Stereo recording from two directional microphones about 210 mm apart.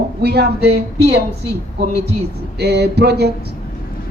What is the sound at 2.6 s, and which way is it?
Speech, 50° right (ahead or behind).